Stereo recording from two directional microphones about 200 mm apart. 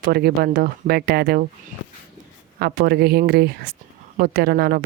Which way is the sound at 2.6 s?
50° right (ahead or behind).